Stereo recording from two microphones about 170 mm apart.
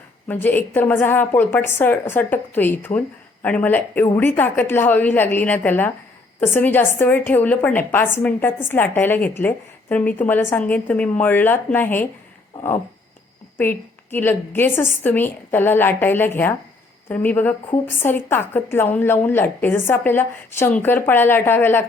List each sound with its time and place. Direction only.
0.3 s a woman's voice: 10° left (ahead or behind)
13.6 s a woman's voice: 10° left (ahead or behind)